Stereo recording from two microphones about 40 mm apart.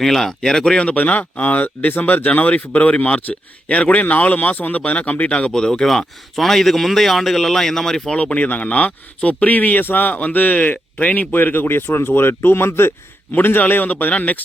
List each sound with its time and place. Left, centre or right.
0.0 s a man's voice: centre
0.9 s speech: left
2.2 s speech: left
5.5 s a man's voice: centre
8.2 s speech: left
9.8 s speech: left
11.3 s speech: left
13.3 s a man's voice: left